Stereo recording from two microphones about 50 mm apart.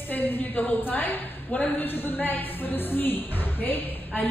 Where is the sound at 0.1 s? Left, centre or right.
Left.